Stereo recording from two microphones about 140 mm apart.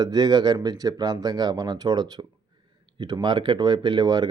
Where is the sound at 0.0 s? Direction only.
30° right (ahead or behind).